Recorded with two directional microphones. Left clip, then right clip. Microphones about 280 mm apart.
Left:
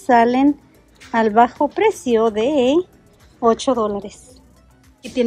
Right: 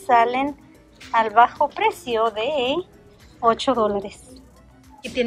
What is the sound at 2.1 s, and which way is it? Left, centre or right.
Speech, left.